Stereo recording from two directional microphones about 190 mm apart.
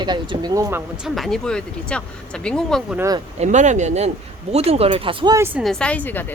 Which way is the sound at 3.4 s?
40° right (ahead or behind).